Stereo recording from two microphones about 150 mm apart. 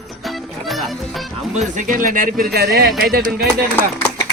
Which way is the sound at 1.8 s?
60° right (ahead or behind).